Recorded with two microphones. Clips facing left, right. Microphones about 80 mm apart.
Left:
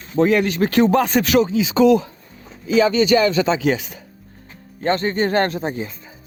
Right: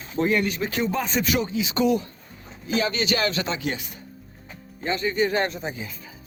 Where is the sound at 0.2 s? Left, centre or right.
Left.